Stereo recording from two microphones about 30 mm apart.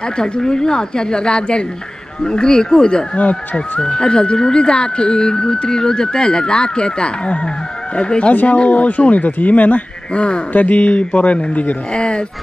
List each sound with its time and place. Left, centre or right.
0.2 s speech: left
10.1 s speech: left
10.5 s speech: left
11.9 s speech: left